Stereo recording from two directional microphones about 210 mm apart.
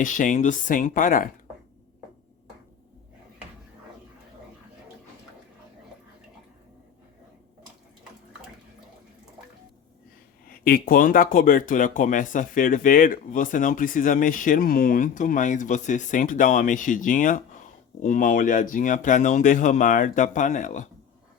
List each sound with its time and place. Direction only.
0.0 s speech: 40° left (ahead or behind)
10.5 s speech: 45° left (ahead or behind)